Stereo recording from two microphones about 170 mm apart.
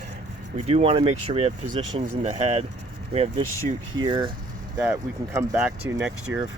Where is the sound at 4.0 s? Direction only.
25° right (ahead or behind).